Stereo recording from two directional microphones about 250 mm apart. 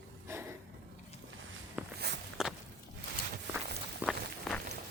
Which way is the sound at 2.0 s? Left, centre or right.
Right.